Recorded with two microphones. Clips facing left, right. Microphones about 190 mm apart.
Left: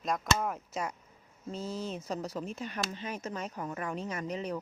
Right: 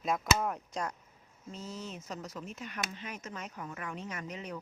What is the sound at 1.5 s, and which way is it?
Speech, 30° left (ahead or behind).